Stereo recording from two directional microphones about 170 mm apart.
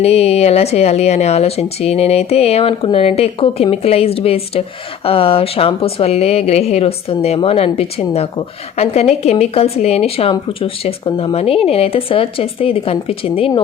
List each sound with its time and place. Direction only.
0.0 s a woman's voice: 35° left (ahead or behind)